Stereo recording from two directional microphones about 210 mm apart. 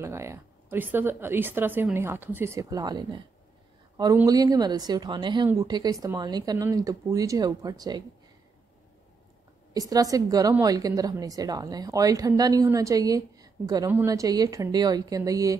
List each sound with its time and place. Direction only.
0.0 s a woman's voice: 15° right (ahead or behind)
9.8 s a woman's voice: 15° right (ahead or behind)